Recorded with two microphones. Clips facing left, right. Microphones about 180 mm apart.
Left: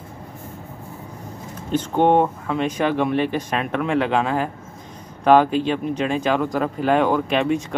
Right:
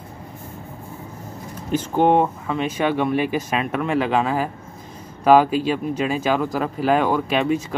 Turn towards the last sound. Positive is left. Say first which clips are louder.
# even
turn(degrees=0)  # may be behind; listen again after turning